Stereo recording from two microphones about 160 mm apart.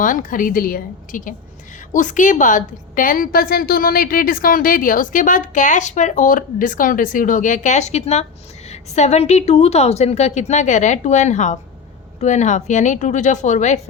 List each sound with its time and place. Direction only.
0.0 s a woman's voice: 55° left (ahead or behind)